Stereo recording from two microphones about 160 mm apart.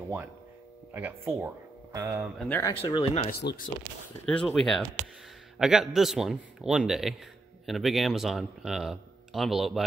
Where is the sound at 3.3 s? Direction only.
80° left.